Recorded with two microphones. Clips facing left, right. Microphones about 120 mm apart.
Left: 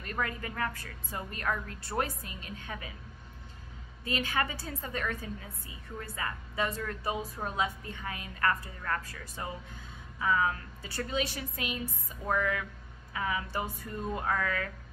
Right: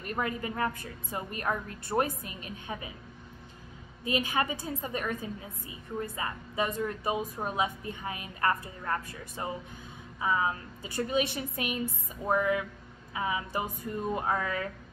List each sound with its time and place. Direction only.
0.0 s a woman's voice: 20° right (ahead or behind)
4.0 s a woman's voice: 20° right (ahead or behind)